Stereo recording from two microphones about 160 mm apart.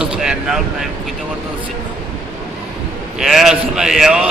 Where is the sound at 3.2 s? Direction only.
Centre (ahead or behind).